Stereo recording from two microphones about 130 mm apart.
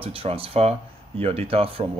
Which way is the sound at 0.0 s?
45° right (ahead or behind).